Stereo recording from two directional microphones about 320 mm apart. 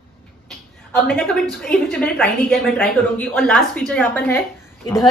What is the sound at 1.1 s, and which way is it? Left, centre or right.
Speech, centre.